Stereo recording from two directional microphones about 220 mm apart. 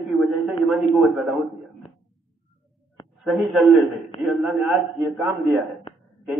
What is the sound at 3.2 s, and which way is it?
Speech, centre (ahead or behind).